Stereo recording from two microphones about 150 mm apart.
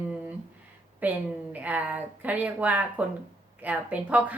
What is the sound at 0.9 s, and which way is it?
A woman's voice, 10° right (ahead or behind).